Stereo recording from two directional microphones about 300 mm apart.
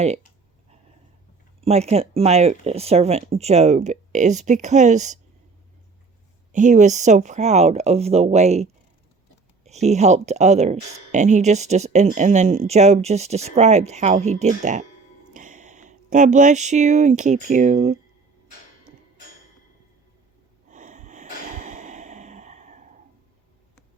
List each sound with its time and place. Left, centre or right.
1.6 s speech: right
6.5 s speech: right
9.6 s speech: right
20.7 s snort: right